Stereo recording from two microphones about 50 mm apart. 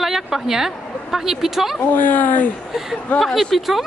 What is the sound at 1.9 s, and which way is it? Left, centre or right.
Speech, left.